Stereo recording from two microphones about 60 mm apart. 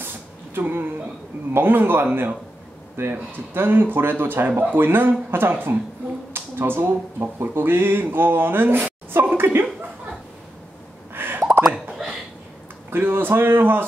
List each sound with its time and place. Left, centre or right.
0.6 s speech: right
9.4 s chuckle: right
11.1 s plop: right
11.6 s a sound: centre
12.9 s speech: right